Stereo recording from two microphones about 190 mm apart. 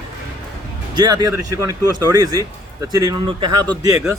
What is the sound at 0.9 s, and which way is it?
Speech, 20° right (ahead or behind).